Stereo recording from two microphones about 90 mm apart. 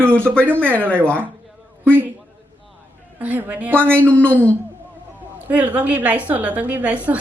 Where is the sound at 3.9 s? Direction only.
15° left (ahead or behind).